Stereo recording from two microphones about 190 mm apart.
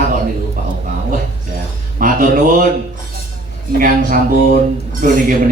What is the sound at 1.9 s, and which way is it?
Speech, 45° right (ahead or behind).